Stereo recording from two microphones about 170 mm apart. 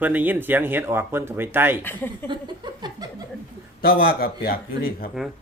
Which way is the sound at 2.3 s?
25° right (ahead or behind).